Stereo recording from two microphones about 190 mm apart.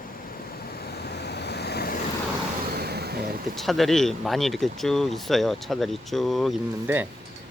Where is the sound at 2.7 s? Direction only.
60° right (ahead or behind).